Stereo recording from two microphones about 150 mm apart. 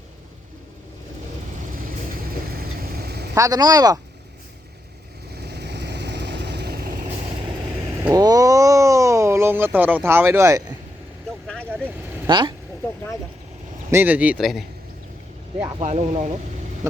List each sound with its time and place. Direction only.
2.5 s vehicle: 85° right
3.3 s speech: 25° right (ahead or behind)
5.3 s vehicle: 90° right
8.1 s a sound: 25° right (ahead or behind)
12.3 s speech: 30° right (ahead or behind)
13.9 s speech: 10° right (ahead or behind)
15.8 s speech: 45° right (ahead or behind)